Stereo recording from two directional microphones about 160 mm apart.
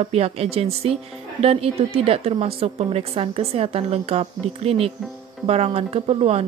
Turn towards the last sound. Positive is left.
turn(degrees=-40)  # may be behind; listen again after turning